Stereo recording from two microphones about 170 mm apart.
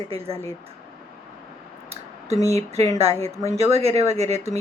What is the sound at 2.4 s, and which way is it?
A woman's voice, 40° right (ahead or behind).